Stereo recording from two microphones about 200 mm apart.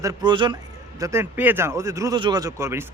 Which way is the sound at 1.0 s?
10° right (ahead or behind).